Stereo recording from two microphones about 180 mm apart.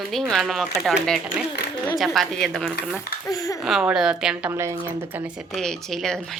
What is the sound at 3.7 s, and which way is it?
Speech, centre (ahead or behind).